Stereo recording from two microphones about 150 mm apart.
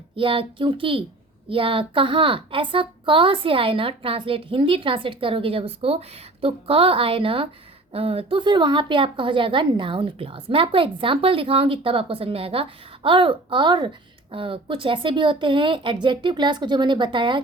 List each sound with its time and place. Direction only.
0.2 s speech: 35° right (ahead or behind)